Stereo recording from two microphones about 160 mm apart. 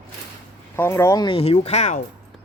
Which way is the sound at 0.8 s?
15° left (ahead or behind).